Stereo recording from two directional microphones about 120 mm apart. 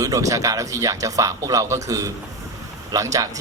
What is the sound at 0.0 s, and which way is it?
Speech, 30° right (ahead or behind).